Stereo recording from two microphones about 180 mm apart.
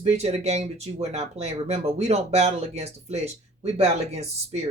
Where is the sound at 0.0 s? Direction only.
35° right (ahead or behind).